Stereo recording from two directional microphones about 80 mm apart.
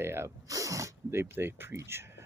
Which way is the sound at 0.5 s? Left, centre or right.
Right.